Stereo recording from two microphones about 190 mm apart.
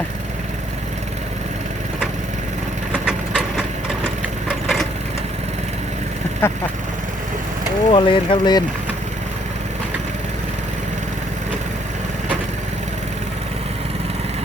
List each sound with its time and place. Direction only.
2.9 s wood: 5° right (ahead or behind)
3.8 s a sound: 5° right (ahead or behind)
6.4 s speech: 15° left (ahead or behind)
7.9 s speech: 25° left (ahead or behind)